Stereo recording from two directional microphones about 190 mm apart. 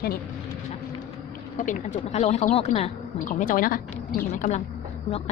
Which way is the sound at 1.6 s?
40° left (ahead or behind).